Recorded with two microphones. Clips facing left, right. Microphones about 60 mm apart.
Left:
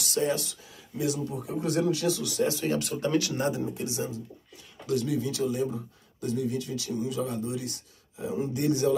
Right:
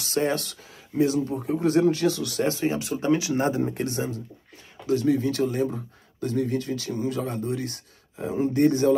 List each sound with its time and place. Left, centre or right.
0.0 s speech: right
0.9 s speech: right
2.6 s speech: right
3.3 s speech: right
3.6 s speech: right
4.8 s speech: right